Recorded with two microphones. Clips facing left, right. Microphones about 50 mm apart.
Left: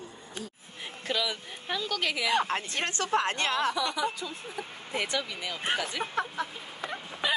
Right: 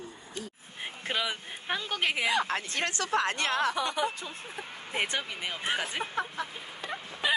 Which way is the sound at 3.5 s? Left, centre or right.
Right.